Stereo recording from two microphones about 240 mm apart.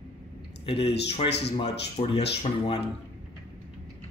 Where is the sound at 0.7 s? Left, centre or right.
Left.